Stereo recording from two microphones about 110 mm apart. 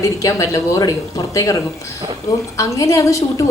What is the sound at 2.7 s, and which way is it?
Speech, 30° left (ahead or behind).